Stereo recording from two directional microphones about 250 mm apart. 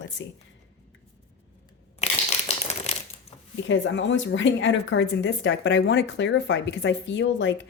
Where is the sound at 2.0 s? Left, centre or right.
Left.